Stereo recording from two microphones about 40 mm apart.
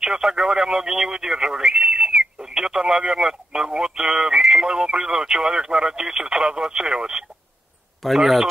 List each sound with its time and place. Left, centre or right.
0.0 s speech: centre
8.0 s speech: centre